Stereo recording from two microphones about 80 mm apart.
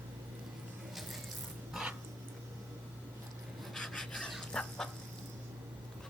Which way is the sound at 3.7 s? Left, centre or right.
Centre.